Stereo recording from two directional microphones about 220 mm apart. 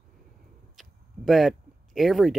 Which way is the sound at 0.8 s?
Centre (ahead or behind).